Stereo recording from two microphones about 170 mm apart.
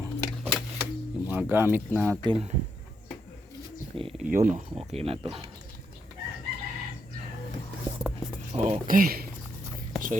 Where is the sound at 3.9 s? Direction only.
30° right (ahead or behind).